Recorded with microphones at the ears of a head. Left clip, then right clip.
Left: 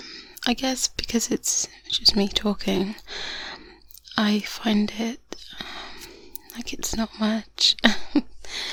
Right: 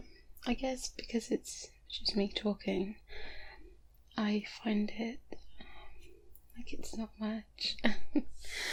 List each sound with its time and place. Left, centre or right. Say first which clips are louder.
0.0 s speech: left 15 dB; left
4.1 s whispering: left 12 dB; left
6.5 s speech: left 15 dB; left